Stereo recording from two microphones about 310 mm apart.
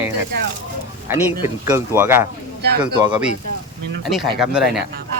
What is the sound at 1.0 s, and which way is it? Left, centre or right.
Speech, centre.